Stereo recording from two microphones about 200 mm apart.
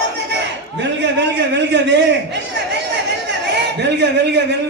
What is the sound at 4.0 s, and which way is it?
Speech, 60° right (ahead or behind).